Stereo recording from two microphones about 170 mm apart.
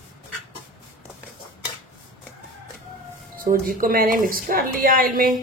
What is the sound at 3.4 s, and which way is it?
A woman's voice, 55° right (ahead or behind).